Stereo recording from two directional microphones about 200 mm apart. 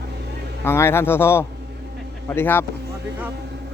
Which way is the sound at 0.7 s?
10° left (ahead or behind).